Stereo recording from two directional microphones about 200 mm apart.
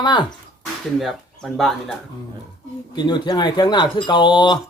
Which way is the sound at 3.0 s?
20° left (ahead or behind).